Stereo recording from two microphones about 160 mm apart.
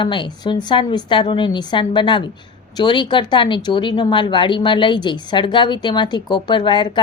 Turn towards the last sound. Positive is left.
turn(degrees=30)  # may be behind; listen again after turning